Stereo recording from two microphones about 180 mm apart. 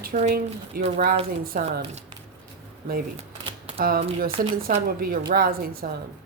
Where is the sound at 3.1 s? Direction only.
35° right (ahead or behind).